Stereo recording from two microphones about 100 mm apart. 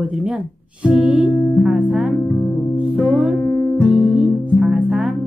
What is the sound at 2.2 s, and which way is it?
Music, 20° left (ahead or behind).